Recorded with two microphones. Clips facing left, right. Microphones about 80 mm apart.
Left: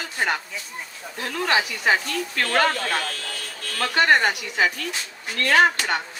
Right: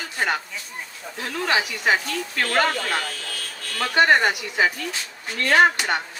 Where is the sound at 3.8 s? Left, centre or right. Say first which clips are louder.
Right 1 dB; centre.